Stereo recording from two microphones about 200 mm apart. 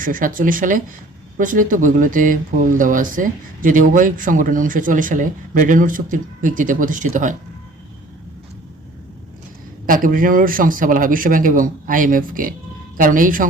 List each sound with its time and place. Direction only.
0.0 s a man's voice: 45° right (ahead or behind)
9.8 s a man's voice: 45° right (ahead or behind)